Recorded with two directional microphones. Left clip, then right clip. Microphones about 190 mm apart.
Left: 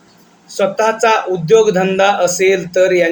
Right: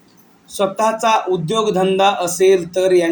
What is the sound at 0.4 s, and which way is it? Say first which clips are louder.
Speech: left 3 dB; 35° right (ahead or behind).